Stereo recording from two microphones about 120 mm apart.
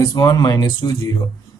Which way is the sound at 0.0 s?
35° left (ahead or behind).